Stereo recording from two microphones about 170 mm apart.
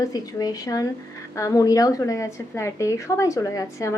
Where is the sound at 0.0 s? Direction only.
20° left (ahead or behind).